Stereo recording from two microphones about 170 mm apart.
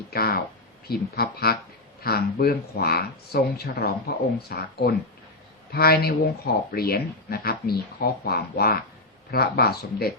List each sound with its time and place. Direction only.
0.1 s speech: 65° left (ahead or behind)